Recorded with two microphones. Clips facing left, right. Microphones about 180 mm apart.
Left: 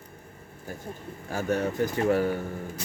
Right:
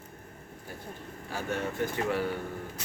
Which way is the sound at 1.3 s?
45° left (ahead or behind).